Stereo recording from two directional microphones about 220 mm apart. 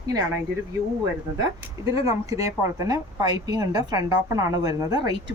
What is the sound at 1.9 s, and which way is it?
A woman's voice, 15° right (ahead or behind).